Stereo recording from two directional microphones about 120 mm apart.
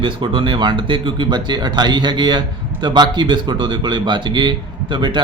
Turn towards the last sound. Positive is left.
turn(degrees=-40)  # may be behind; listen again after turning